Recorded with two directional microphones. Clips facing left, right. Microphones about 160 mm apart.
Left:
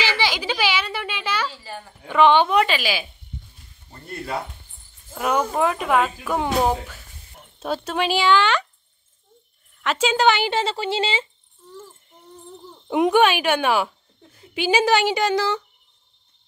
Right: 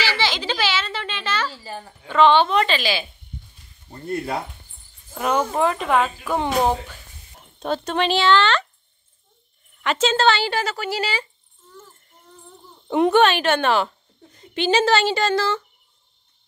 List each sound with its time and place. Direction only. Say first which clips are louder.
0.0 s a sound: even; 15° left (ahead or behind)
2.0 s speech: even; 15° left (ahead or behind)
5.1 s speech: even; centre (ahead or behind)
7.5 s speech: right 2 dB; 5° left (ahead or behind)
9.9 s a woman's voice: even; 15° left (ahead or behind)
12.8 s a woman's voice: right 1 dB; 10° left (ahead or behind)